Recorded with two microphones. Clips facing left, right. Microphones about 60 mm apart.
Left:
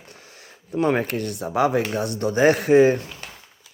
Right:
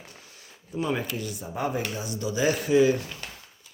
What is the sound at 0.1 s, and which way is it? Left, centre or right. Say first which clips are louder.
Speech: left 4 dB; left.